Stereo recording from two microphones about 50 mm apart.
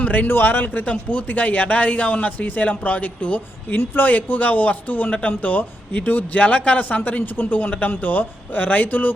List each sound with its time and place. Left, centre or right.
0.0 s speech: left
0.3 s a man's voice: left
3.8 s speech: left
4.1 s a man's voice: left